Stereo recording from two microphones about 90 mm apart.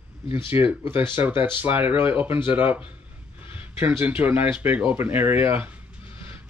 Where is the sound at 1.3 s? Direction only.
65° left (ahead or behind).